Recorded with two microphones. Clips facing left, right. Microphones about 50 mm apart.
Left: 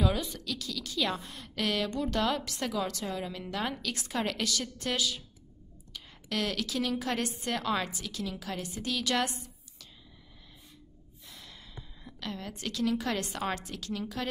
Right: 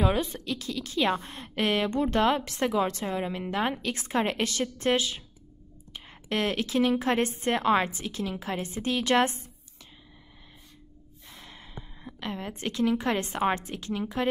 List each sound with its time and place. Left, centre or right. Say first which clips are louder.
0.0 s a woman's voice: right 4 dB; right
11.2 s a woman's voice: right 3 dB; right